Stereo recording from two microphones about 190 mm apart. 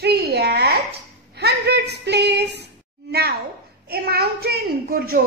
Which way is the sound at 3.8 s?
55° right (ahead or behind).